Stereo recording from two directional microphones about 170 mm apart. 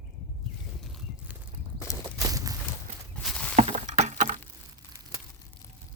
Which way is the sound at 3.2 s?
5° left (ahead or behind).